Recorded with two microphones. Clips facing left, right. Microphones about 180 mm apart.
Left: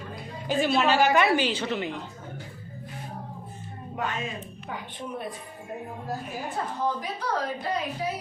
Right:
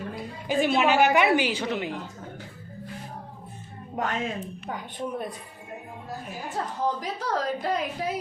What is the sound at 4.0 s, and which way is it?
Speech, 45° right (ahead or behind).